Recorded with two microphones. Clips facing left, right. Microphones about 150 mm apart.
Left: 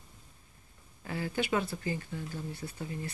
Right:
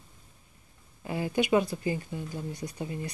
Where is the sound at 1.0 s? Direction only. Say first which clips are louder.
Right 5 dB; 15° right (ahead or behind).